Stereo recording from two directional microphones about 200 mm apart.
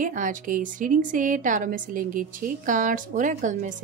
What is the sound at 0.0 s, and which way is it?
A woman's voice, 40° right (ahead or behind).